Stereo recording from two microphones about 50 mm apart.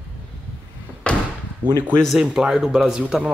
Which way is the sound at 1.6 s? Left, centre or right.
Right.